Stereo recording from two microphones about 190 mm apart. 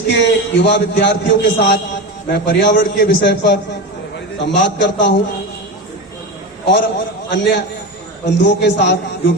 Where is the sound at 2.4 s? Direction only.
70° left (ahead or behind).